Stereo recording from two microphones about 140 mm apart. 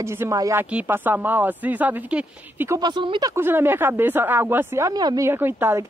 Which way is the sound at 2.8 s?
35° right (ahead or behind).